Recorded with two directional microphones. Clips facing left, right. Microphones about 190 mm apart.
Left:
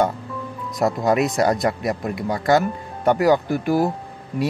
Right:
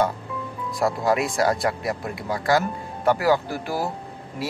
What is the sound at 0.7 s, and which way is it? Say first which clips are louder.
Speech: left 3 dB; 20° left (ahead or behind).